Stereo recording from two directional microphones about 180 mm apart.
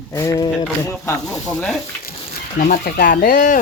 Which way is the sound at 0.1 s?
20° left (ahead or behind).